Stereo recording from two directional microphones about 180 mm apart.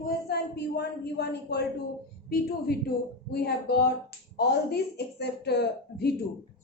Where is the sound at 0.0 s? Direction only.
65° left (ahead or behind).